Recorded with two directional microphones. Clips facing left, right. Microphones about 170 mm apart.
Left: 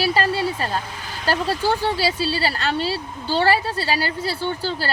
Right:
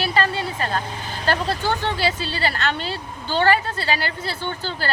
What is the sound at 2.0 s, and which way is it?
A woman's voice, 35° left (ahead or behind).